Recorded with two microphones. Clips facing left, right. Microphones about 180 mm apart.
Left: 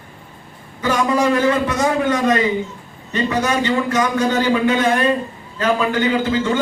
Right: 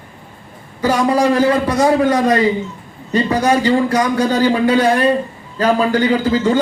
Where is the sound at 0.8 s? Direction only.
35° right (ahead or behind).